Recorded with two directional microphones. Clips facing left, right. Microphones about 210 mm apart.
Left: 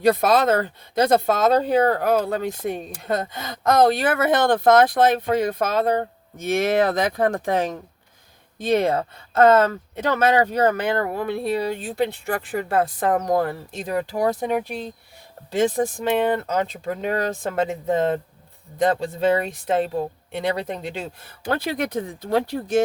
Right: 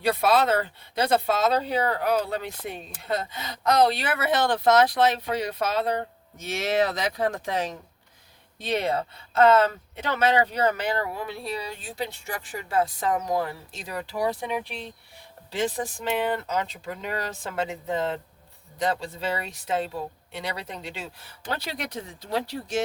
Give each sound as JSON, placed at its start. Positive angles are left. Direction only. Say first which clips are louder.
{"t": 0.0, "sound": "speech", "louder": "left 4 dB", "side_deg": 45}